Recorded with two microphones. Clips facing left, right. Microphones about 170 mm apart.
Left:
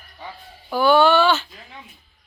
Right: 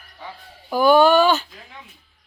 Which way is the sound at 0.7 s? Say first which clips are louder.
Right 2 dB; 15° right (ahead or behind).